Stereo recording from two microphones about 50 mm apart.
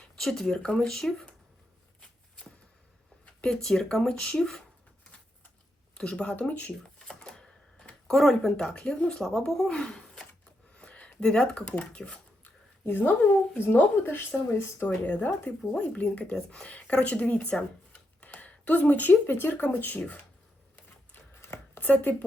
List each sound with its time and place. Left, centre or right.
0.2 s speech: centre
2.0 s walk: centre
3.4 s speech: centre
6.0 s speech: left
6.8 s typewriter: centre
9.6 s speech: centre
10.8 s a sound: left
11.2 s speech: centre
12.8 s speech: left
14.8 s speech: left
16.0 s speech: left
18.2 s a sound: left
19.3 s speech: left
21.8 s chopping: left